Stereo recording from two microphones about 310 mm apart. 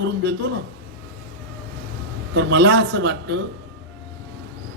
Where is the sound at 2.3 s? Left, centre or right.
Right.